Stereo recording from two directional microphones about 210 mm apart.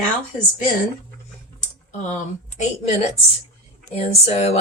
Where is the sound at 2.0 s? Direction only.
35° left (ahead or behind).